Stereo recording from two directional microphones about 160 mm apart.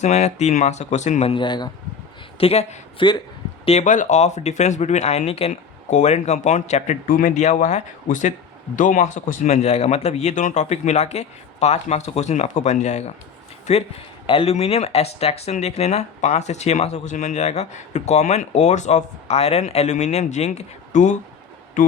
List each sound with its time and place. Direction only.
0.0 s speech: 45° left (ahead or behind); by 1.7 s 25° left (ahead or behind)
2.4 s speech: 40° left (ahead or behind)
7.1 s speech: 60° left (ahead or behind)
14.3 s speech: 35° left (ahead or behind); by 21.9 s 55° left (ahead or behind)